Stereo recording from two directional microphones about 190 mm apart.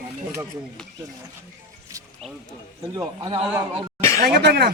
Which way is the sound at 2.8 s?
20° right (ahead or behind).